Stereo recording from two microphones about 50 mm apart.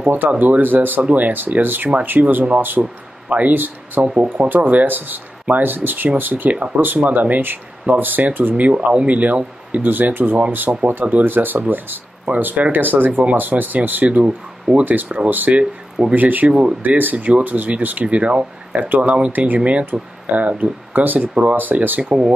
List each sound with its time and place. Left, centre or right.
0.0 s speech: right
2.8 s speech: right
3.5 s speech: right
14.9 s speech: right
16.4 s speech: right
16.8 s speech: right
19.3 s speech: right